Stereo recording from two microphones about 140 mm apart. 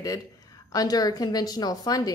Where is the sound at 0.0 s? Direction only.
25° left (ahead or behind).